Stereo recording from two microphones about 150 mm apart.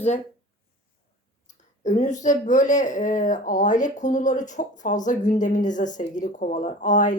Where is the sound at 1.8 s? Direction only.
55° left (ahead or behind).